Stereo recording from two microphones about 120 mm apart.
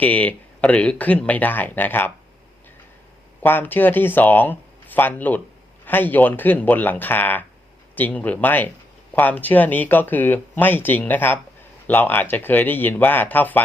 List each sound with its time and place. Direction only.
0.0 s speech: 10° left (ahead or behind)
3.4 s speech: 15° left (ahead or behind)